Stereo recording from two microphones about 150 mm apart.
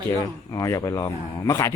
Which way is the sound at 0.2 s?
20° left (ahead or behind).